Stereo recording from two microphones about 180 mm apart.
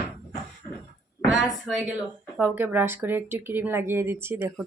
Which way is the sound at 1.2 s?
Centre (ahead or behind).